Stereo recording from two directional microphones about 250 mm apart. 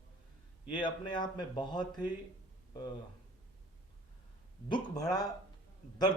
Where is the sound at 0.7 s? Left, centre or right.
Centre.